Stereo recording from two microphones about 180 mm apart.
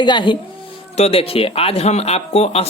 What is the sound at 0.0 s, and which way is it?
Speech, 25° left (ahead or behind).